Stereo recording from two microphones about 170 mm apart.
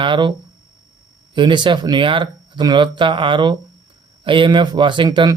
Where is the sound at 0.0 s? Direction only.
30° right (ahead or behind).